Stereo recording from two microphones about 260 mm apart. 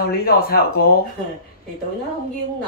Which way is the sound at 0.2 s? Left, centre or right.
Left.